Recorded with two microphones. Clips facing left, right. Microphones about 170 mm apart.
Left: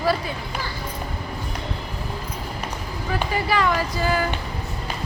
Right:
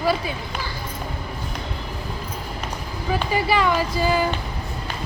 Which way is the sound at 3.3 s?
20° right (ahead or behind).